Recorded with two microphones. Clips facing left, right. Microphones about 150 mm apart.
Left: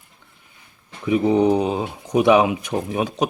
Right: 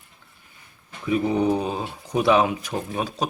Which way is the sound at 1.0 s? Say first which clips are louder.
Left 4 dB; 20° left (ahead or behind).